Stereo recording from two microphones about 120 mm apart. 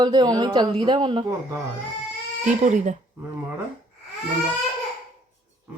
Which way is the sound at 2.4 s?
90° right.